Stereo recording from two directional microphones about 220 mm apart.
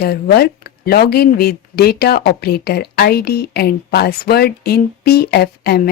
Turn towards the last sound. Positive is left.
turn(degrees=45)  # may be behind; listen again after turning